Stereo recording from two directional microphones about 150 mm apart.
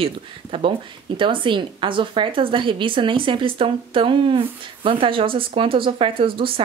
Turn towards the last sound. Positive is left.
turn(degrees=-35)  # may be behind; listen again after turning